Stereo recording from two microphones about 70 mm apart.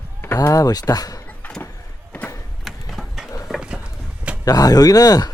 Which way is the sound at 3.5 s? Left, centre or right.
Centre.